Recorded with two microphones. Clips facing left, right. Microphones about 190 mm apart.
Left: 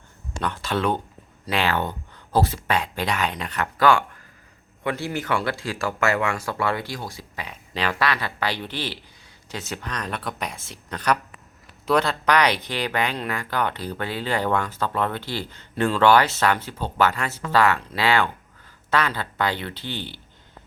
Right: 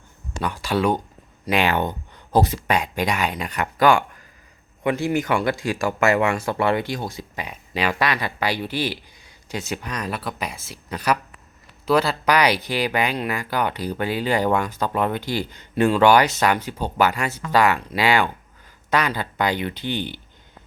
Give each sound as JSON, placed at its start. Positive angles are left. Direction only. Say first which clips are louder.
{"t": 0.3, "sound": "speech", "louder": "right 3 dB", "side_deg": -10}